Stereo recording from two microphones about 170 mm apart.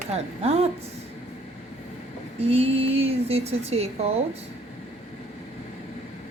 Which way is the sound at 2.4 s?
35° right (ahead or behind).